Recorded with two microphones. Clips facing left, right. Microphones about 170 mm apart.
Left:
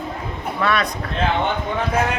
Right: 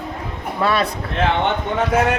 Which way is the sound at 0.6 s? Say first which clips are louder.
Right 2 dB; 30° right (ahead or behind).